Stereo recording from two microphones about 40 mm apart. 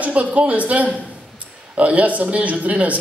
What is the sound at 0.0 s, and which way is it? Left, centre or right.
A man's voice, right.